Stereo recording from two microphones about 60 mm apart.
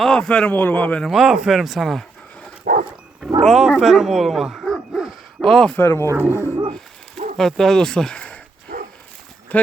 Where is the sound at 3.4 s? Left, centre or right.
Centre.